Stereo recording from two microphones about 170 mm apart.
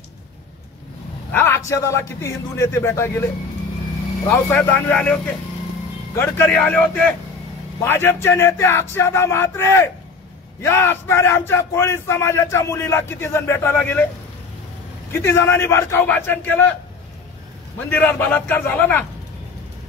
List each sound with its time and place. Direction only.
1.3 s speech: 15° left (ahead or behind)
4.3 s speech: 10° left (ahead or behind)
15.2 s speech: 15° left (ahead or behind)
17.7 s speech: 10° left (ahead or behind)